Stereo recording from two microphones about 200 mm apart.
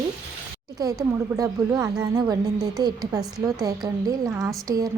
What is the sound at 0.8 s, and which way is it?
A woman's voice, 20° right (ahead or behind).